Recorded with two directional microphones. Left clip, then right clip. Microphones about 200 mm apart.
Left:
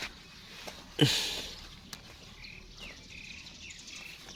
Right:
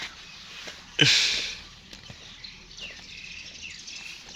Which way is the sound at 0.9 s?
20° left (ahead or behind).